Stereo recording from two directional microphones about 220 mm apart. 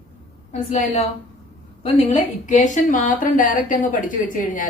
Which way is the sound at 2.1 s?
35° left (ahead or behind).